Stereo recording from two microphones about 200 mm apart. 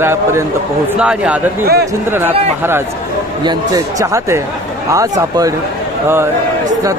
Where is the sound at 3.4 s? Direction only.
20° right (ahead or behind).